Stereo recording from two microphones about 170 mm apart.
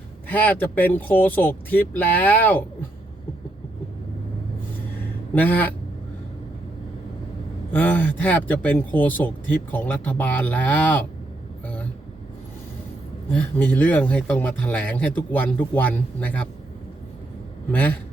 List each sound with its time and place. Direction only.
0.3 s speech: 10° left (ahead or behind)
5.3 s speech: 10° left (ahead or behind)
7.7 s speech: 10° left (ahead or behind)
13.3 s speech: 10° left (ahead or behind)
17.7 s speech: 10° left (ahead or behind)